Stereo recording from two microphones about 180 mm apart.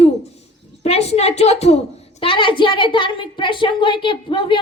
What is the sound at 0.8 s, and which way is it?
A woman's voice, 35° left (ahead or behind).